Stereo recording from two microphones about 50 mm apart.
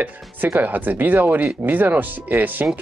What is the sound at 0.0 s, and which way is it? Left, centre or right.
Speech, right.